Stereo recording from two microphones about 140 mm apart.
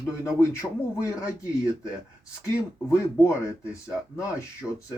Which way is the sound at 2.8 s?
20° left (ahead or behind).